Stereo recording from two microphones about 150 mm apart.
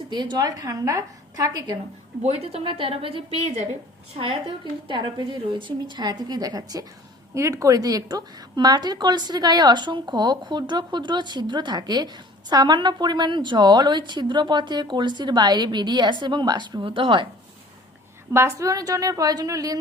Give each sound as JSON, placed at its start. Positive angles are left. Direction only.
{"t": 0.1, "sound": "a woman's voice", "side_deg": -30}
{"t": 2.2, "sound": "a woman's voice", "side_deg": -45}
{"t": 3.4, "sound": "a woman's voice", "side_deg": -50}
{"t": 4.1, "sound": "a woman's voice", "side_deg": -40}
{"t": 18.3, "sound": "a woman's voice", "side_deg": -20}